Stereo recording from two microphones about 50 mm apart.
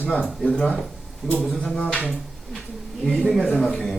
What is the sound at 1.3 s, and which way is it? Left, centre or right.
Speech, left.